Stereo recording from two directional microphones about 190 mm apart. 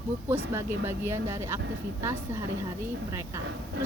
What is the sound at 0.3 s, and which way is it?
A woman's voice, 10° right (ahead or behind).